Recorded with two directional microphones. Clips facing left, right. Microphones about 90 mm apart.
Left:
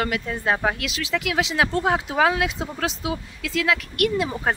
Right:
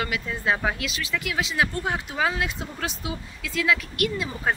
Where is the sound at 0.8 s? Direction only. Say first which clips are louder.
Left 3 dB; 85° left; by 4.2 s 65° left (ahead or behind).